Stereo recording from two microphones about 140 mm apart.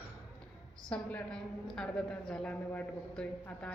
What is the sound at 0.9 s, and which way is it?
A woman's voice, 10° left (ahead or behind).